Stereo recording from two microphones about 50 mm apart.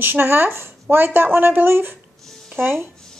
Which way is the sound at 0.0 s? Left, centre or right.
Right.